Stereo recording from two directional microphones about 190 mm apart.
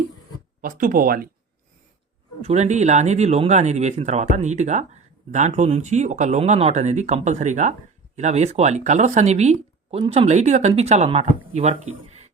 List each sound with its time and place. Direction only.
0.6 s speech: 50° right (ahead or behind)
2.4 s speech: 35° right (ahead or behind)